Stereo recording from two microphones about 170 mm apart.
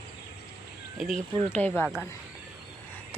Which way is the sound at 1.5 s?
10° left (ahead or behind).